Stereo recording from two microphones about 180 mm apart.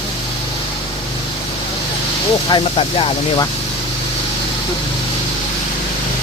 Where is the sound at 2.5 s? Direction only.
25° left (ahead or behind).